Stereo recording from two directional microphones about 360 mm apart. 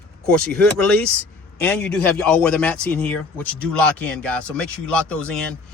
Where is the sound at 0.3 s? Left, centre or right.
Centre.